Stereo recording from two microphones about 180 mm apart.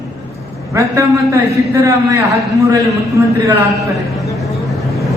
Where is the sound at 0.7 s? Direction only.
15° right (ahead or behind).